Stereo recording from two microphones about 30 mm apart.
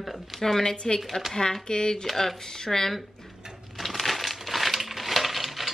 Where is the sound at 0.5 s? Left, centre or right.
Left.